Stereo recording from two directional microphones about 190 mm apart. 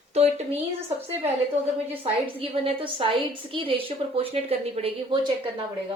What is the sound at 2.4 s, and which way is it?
A woman's voice, 30° right (ahead or behind).